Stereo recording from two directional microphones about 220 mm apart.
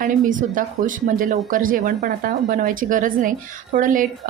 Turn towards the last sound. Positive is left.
turn(degrees=-35)  # may be behind; listen again after turning